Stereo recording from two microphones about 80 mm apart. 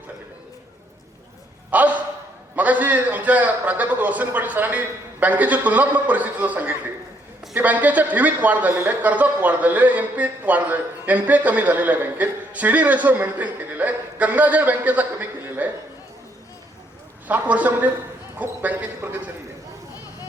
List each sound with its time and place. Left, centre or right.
1.7 s a sound: centre
2.6 s speech: centre
17.2 s speech: right